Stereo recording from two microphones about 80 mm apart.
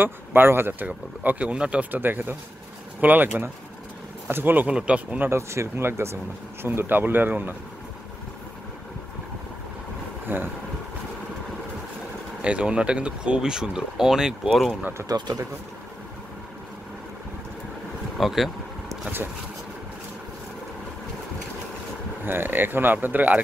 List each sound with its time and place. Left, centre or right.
0.0 s speech: right
4.6 s speech: centre
5.3 s speech: right
10.2 s speech: right
12.4 s speech: centre
14.7 s speech: centre
15.0 s speech: right
18.1 s speech: centre
22.2 s speech: right